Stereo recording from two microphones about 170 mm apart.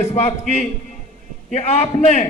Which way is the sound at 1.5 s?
40° left (ahead or behind).